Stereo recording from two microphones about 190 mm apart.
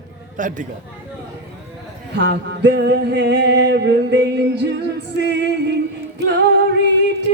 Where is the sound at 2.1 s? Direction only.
65° right (ahead or behind).